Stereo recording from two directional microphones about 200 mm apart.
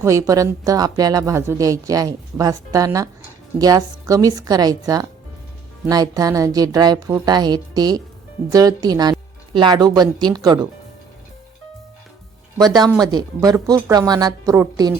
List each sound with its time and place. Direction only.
0.0 s speech: 15° right (ahead or behind)
12.5 s speech: 20° right (ahead or behind)